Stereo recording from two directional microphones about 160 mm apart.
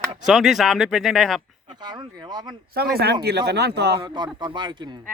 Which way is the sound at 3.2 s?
90° right.